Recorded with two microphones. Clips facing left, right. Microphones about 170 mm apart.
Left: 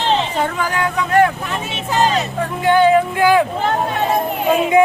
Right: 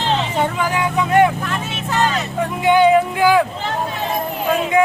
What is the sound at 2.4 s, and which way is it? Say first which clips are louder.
Speech: right 1 dB; 15° right (ahead or behind).